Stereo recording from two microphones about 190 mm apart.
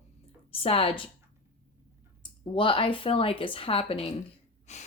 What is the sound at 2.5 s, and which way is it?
A woman's voice, 25° left (ahead or behind).